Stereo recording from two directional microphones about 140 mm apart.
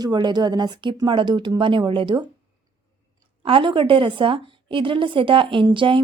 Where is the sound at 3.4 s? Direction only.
40° right (ahead or behind).